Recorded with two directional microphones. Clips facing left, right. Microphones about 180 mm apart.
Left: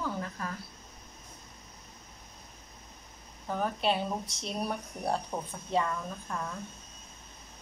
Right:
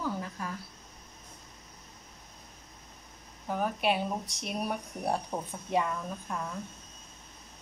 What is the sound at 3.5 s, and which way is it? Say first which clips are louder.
Speech: right 1 dB; 10° right (ahead or behind).